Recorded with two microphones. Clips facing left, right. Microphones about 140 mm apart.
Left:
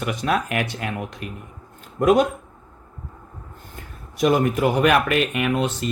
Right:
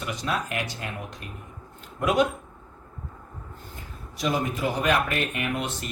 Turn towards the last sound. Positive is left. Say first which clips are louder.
# left 7 dB
turn(degrees=90)